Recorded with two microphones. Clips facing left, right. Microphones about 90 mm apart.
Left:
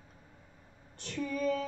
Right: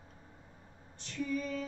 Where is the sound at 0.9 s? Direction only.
55° left (ahead or behind).